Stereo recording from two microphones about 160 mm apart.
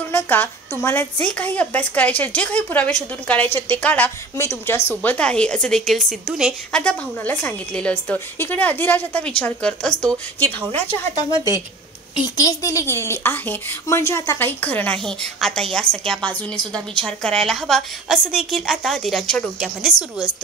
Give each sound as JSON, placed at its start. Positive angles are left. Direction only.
{"t": 0.1, "sound": "a sound", "side_deg": 10}
{"t": 0.8, "sound": "speech", "side_deg": 10}
{"t": 11.2, "sound": "a woman's voice", "side_deg": 25}